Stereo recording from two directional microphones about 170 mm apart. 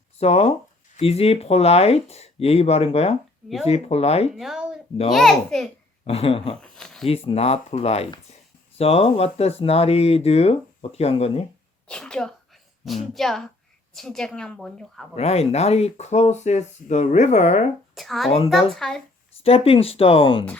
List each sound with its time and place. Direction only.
0.2 s speech: 35° left (ahead or behind)
4.4 s a woman's voice: 5° right (ahead or behind)
6.1 s speech: 35° left (ahead or behind)
6.6 s a sound: centre (ahead or behind)
7.1 s speech: 35° left (ahead or behind)
11.9 s a woman's voice: 5° left (ahead or behind)
15.1 s speech: 40° left (ahead or behind)
17.9 s a child's voice: centre (ahead or behind)
18.3 s speech: 35° left (ahead or behind)
18.7 s a woman's voice: centre (ahead or behind)
19.4 s speech: 35° left (ahead or behind)